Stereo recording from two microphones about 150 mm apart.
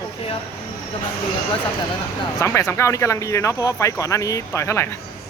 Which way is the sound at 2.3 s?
20° left (ahead or behind).